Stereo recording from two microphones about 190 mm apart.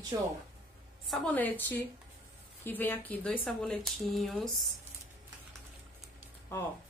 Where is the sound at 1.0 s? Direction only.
5° left (ahead or behind).